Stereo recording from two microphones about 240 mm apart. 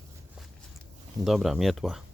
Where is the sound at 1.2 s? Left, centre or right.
Centre.